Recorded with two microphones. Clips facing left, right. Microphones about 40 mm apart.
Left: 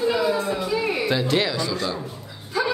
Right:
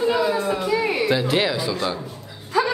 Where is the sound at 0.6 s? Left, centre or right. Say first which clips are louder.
Right 2 dB; right.